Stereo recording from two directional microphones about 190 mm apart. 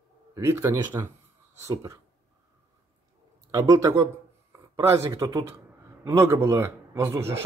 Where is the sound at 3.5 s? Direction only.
15° right (ahead or behind).